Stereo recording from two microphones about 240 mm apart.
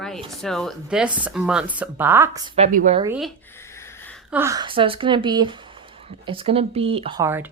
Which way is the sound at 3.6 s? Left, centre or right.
Centre.